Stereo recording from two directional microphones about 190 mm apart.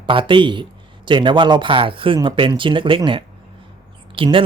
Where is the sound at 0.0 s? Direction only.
25° right (ahead or behind).